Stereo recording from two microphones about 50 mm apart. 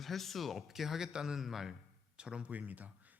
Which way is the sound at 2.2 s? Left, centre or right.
Right.